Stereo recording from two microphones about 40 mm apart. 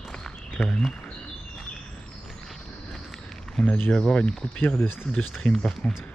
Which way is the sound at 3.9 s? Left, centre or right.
Left.